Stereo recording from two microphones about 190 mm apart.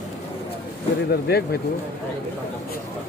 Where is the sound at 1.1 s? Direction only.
55° left (ahead or behind).